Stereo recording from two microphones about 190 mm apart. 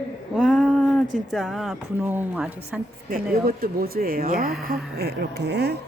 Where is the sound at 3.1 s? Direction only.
50° right (ahead or behind).